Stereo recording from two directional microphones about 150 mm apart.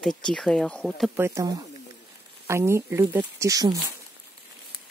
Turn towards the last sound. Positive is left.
turn(degrees=-25)  # may be behind; listen again after turning